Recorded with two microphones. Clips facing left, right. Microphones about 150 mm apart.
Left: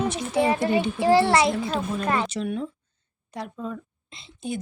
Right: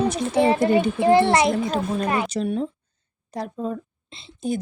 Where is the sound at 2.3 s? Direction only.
35° right (ahead or behind).